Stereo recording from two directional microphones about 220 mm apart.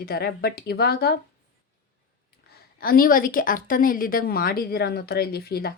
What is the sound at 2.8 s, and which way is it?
A woman's voice, 40° left (ahead or behind).